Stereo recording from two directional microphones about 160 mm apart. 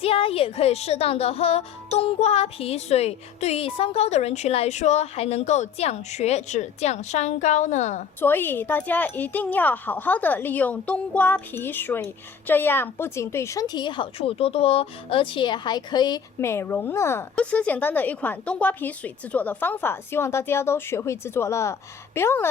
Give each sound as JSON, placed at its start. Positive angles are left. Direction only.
{"t": 0.0, "sound": "speech", "side_deg": 35}
{"t": 8.2, "sound": "a woman's voice", "side_deg": 15}